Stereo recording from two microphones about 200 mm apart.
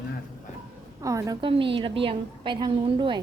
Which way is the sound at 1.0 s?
15° right (ahead or behind).